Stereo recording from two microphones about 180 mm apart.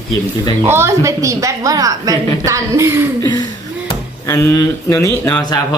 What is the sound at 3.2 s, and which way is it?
Speech, 20° left (ahead or behind).